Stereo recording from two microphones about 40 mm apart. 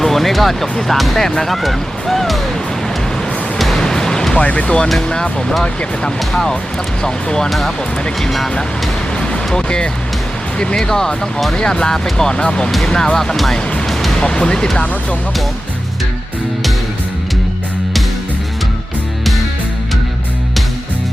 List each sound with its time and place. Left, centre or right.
0.0 s speech: centre
3.6 s music: centre
4.6 s speech: left
9.6 s speech: left
13.8 s music: centre
14.2 s speech: left